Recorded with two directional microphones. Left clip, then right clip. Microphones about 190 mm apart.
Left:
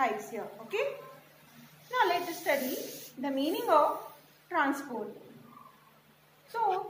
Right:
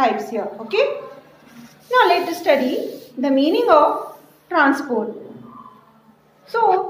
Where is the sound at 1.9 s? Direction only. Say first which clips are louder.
Right 14 dB; 50° right (ahead or behind).